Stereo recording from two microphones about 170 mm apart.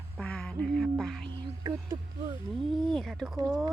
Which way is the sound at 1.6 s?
20° right (ahead or behind).